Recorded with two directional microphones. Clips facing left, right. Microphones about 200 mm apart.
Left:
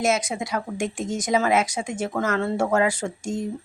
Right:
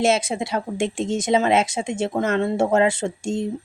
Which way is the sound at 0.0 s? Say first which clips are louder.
Right 3 dB; 30° right (ahead or behind).